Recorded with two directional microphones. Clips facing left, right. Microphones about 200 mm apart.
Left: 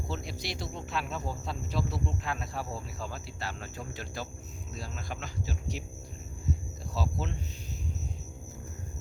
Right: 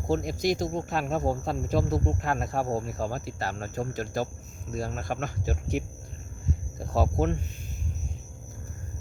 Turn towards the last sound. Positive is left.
turn(degrees=-55)  # may be behind; listen again after turning